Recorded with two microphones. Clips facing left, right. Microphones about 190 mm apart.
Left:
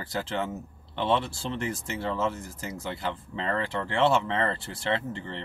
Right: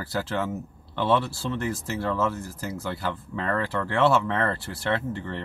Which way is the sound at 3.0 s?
20° left (ahead or behind).